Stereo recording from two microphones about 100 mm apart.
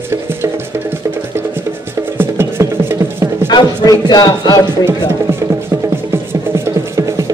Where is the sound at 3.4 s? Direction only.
45° left (ahead or behind).